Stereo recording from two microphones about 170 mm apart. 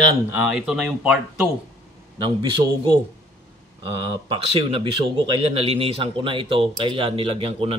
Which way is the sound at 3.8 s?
30° right (ahead or behind).